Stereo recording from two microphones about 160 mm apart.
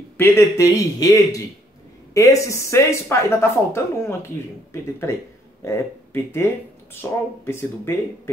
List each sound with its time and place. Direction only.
0.2 s a man's voice: 20° left (ahead or behind)
5.6 s speech: 15° left (ahead or behind)